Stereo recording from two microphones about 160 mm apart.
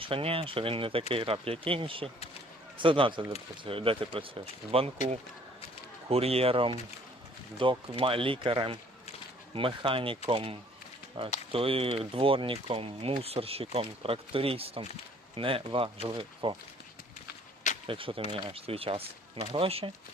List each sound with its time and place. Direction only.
0.0 s speech: 35° right (ahead or behind)
6.1 s speech: 40° right (ahead or behind)
17.8 s speech: 35° right (ahead or behind)